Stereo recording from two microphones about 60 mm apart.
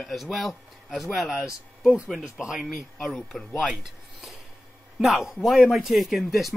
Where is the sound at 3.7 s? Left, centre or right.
Centre.